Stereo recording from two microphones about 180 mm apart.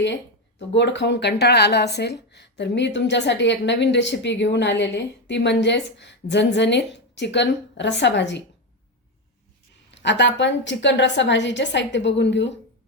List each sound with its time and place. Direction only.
0.7 s speech: 75° left (ahead or behind)
9.9 s a woman's voice: 80° left